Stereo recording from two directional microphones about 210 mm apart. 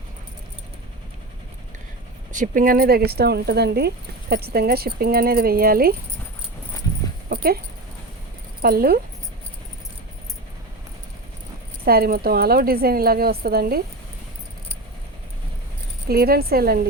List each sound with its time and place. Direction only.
2.3 s speech: 40° right (ahead or behind)
7.3 s a sound: 45° right (ahead or behind)
8.6 s speech: 45° right (ahead or behind)
11.9 s speech: 45° right (ahead or behind)
16.0 s speech: 45° right (ahead or behind)